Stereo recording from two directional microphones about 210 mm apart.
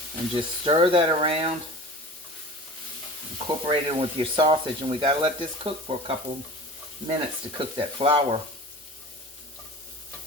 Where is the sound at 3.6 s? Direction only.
25° right (ahead or behind).